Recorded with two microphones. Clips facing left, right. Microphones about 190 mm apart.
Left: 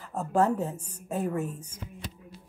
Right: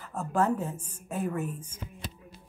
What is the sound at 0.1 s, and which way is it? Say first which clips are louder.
Speech: left 2 dB; 40° left (ahead or behind).